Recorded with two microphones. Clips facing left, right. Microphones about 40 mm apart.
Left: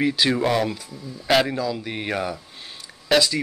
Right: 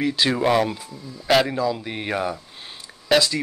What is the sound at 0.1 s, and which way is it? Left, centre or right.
Speech, centre.